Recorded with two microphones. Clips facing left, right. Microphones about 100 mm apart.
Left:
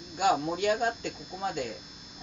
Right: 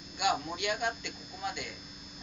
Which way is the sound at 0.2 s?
40° left (ahead or behind).